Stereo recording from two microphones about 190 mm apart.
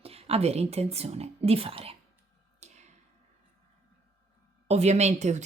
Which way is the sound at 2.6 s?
35° right (ahead or behind).